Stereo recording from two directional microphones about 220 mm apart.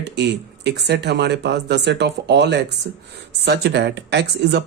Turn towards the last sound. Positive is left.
turn(degrees=-50)  # may be behind; listen again after turning